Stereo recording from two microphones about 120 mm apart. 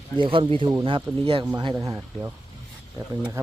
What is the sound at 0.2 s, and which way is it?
Speech, 45° right (ahead or behind).